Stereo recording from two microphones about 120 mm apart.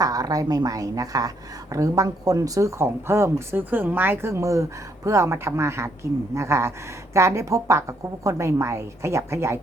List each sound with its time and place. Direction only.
0.0 s a woman's voice: 30° right (ahead or behind)